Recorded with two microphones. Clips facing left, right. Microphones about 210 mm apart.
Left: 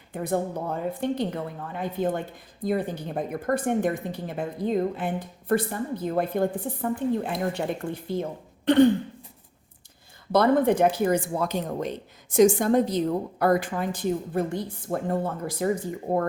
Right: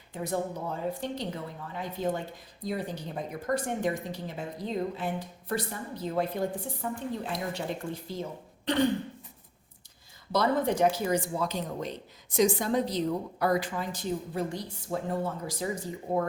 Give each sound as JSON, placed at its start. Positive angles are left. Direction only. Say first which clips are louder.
{"t": 1.0, "sound": "speech", "louder": "left 7 dB", "side_deg": 55}
{"t": 10.3, "sound": "speech", "louder": "left 6 dB", "side_deg": 55}